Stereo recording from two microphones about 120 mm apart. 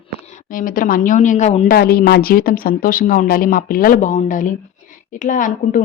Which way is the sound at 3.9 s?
90° left.